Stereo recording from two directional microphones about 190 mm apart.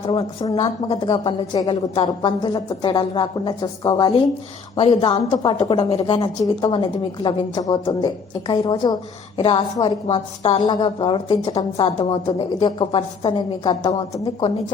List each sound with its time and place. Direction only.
0.5 s a woman's voice: 30° left (ahead or behind)
10.1 s a woman's voice: 35° left (ahead or behind)
10.6 s a woman's voice: 25° left (ahead or behind)